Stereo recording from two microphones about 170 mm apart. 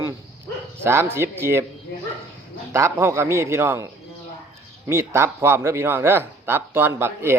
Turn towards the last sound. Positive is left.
turn(degrees=-15)  # may be behind; listen again after turning